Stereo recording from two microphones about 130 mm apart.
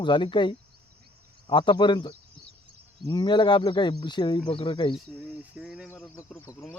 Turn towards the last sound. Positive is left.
turn(degrees=25)  # may be behind; listen again after turning